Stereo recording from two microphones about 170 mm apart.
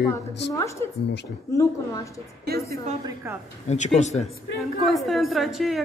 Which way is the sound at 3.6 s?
40° left (ahead or behind).